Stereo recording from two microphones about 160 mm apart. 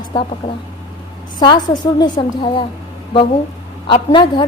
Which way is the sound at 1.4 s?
25° left (ahead or behind).